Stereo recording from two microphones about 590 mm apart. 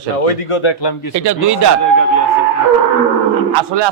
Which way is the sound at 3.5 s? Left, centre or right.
Right.